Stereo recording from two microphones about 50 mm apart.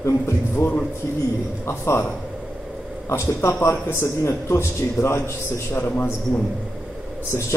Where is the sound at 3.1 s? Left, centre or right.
Left.